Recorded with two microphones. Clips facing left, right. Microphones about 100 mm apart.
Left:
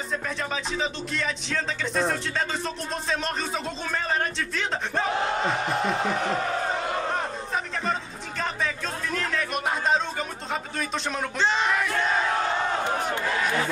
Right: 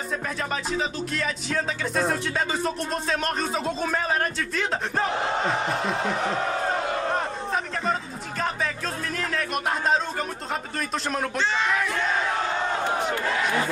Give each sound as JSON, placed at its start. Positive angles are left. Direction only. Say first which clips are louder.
{"t": 0.7, "sound": "speech", "louder": "right 2 dB", "side_deg": -5}
{"t": 9.1, "sound": "speech", "louder": "left 1 dB", "side_deg": 0}
{"t": 11.3, "sound": "speech", "louder": "left 3 dB", "side_deg": 20}